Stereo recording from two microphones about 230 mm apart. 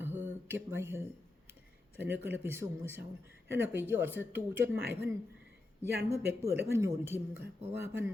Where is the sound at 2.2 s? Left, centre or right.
Centre.